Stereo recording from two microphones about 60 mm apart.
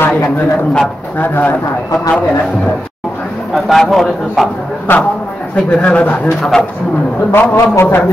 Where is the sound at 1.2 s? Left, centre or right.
Left.